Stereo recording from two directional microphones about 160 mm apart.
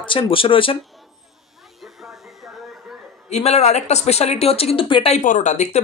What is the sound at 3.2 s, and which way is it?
Speech, 45° left (ahead or behind).